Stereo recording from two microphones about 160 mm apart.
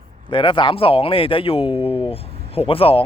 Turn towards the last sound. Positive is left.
turn(degrees=35)  # may be behind; listen again after turning